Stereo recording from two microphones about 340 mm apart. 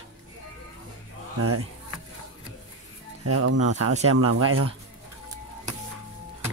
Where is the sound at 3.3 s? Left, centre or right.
Right.